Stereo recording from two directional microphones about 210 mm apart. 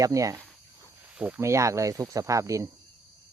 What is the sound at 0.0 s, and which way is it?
Speech, 15° right (ahead or behind).